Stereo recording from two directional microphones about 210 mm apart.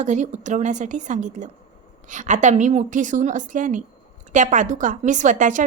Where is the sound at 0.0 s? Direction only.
35° right (ahead or behind).